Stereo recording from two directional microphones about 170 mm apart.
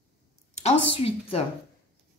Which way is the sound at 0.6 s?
35° left (ahead or behind).